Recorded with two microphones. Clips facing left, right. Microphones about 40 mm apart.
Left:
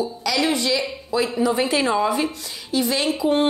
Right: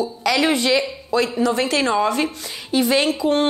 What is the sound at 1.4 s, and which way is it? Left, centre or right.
Speech, centre.